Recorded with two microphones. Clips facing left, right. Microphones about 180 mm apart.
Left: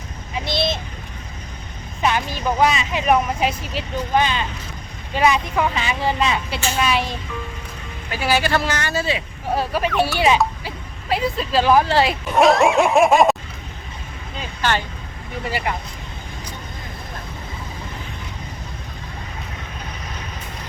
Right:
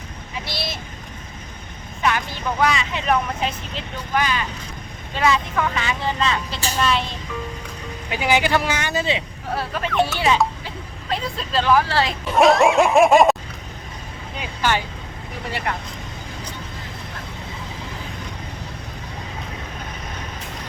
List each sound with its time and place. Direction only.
0.3 s a sound: 20° left (ahead or behind)
2.0 s speech: 20° left (ahead or behind)
4.1 s speech: 25° left (ahead or behind)
8.1 s speech: 20° right (ahead or behind)
9.6 s speech: 15° left (ahead or behind)
11.7 s speech: 20° left (ahead or behind)
12.4 s snicker: centre (ahead or behind)
14.3 s speech: 10° right (ahead or behind)
15.4 s snicker: centre (ahead or behind)